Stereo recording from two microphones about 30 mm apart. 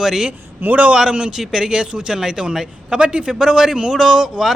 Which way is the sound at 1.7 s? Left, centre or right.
Right.